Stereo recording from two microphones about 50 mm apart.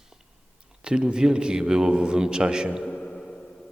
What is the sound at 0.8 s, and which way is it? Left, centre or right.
A man's voice, centre.